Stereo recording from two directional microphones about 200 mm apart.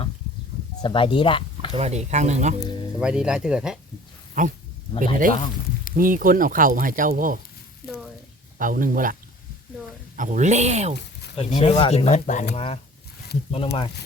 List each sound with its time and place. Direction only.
0.8 s speech: 25° left (ahead or behind)
1.7 s speech: 35° right (ahead or behind)
3.0 s speech: 5° right (ahead or behind)
4.4 s speech: 40° right (ahead or behind)
5.3 s speech: 40° left (ahead or behind)
6.0 s speech: 45° right (ahead or behind)
8.5 s speech: 45° right (ahead or behind)
10.2 s speech: 35° right (ahead or behind)
11.3 s speech: 30° left (ahead or behind)